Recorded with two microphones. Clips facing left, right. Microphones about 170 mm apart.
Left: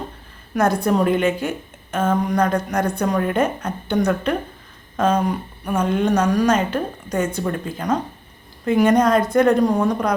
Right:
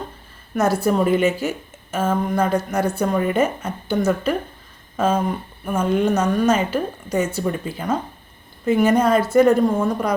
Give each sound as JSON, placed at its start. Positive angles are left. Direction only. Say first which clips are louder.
{"t": 0.5, "sound": "a woman's voice", "louder": "even", "side_deg": -5}